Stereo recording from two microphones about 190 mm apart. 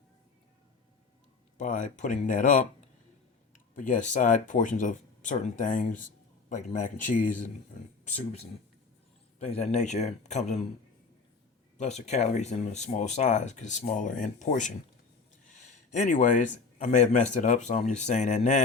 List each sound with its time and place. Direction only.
1.5 s speech: 40° left (ahead or behind)
9.4 s speech: 35° left (ahead or behind)
11.8 s speech: 35° left (ahead or behind)